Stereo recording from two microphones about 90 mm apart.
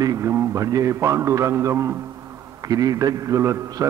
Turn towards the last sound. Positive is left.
turn(degrees=-30)  # may be behind; listen again after turning